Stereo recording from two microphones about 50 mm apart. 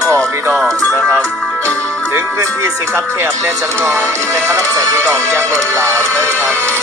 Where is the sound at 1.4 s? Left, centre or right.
Left.